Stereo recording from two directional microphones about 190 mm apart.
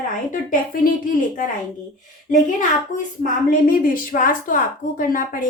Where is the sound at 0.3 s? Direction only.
45° left (ahead or behind).